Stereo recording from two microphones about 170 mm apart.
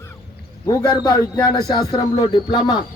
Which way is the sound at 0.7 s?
20° left (ahead or behind).